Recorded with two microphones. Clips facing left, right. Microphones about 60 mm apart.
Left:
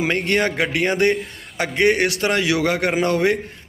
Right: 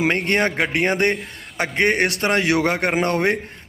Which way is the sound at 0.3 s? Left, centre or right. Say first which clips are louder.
Even; right.